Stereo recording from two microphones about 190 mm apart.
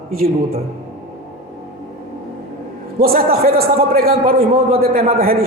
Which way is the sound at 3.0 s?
50° right (ahead or behind).